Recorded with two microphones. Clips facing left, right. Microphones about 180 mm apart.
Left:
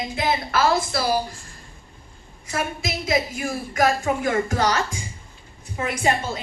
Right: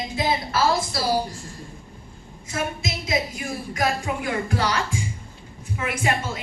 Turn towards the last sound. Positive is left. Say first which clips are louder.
# left 2 dB
turn(degrees=35)  # may be behind; listen again after turning